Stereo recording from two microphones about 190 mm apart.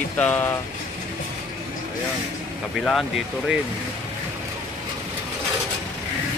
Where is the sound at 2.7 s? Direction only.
Centre (ahead or behind).